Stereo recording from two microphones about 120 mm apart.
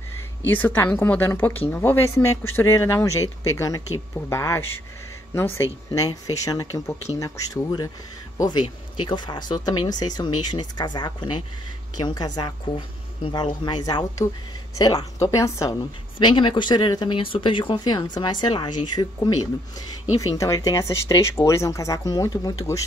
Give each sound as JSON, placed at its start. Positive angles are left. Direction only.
{"t": 0.5, "sound": "speech", "side_deg": 15}
{"t": 5.9, "sound": "speech", "side_deg": 30}
{"t": 8.4, "sound": "speech", "side_deg": 40}
{"t": 16.2, "sound": "speech", "side_deg": 40}